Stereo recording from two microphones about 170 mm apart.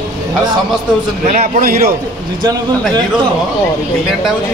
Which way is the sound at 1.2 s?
40° right (ahead or behind).